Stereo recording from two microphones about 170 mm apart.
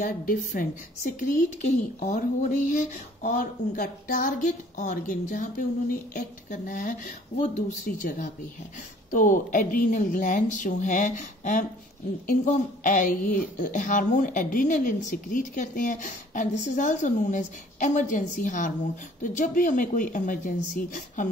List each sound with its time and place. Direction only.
0.0 s speech: 50° left (ahead or behind)
2.0 s speech: 45° left (ahead or behind)